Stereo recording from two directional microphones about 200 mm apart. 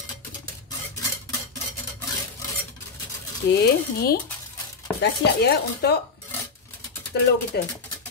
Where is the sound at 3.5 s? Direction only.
55° left (ahead or behind).